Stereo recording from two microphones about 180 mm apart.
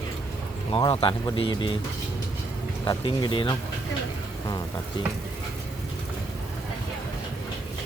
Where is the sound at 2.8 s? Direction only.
25° left (ahead or behind).